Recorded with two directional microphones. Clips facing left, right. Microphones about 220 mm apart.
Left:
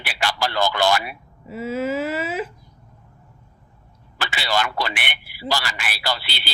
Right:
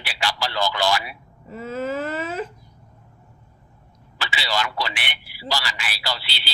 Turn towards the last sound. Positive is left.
turn(degrees=55)  # may be behind; listen again after turning